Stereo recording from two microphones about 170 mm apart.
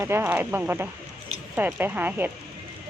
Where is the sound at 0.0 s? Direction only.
15° right (ahead or behind).